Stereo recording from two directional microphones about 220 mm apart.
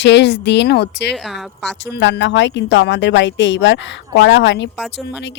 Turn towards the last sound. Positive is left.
turn(degrees=55)  # may be behind; listen again after turning